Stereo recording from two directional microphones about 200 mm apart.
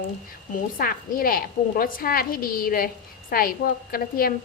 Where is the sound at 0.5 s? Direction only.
45° left (ahead or behind).